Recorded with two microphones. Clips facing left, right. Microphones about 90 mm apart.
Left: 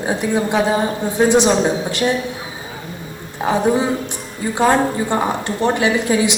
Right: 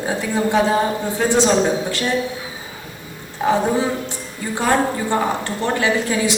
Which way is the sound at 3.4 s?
20° left (ahead or behind).